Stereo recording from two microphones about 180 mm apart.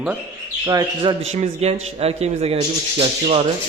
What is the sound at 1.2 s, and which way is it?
Speech, 40° right (ahead or behind).